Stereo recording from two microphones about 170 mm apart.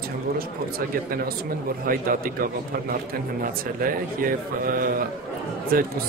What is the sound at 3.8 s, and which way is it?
Speech, 55° right (ahead or behind).